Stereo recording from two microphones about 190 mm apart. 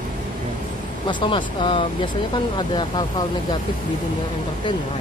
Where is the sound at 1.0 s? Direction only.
25° left (ahead or behind).